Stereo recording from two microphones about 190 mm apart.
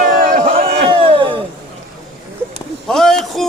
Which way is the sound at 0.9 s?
30° right (ahead or behind).